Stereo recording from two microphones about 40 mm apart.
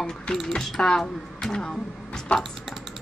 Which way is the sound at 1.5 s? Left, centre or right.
Centre.